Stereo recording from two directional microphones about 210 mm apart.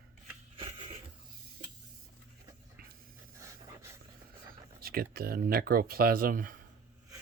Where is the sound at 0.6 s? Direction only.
25° right (ahead or behind).